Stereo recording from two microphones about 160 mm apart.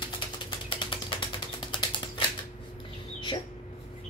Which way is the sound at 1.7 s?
30° left (ahead or behind).